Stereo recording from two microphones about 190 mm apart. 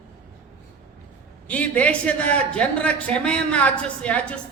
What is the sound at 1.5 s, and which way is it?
A man's voice, 5° left (ahead or behind).